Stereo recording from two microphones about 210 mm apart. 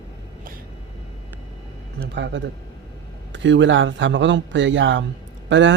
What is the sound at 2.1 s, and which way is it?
A man's voice, 55° right (ahead or behind).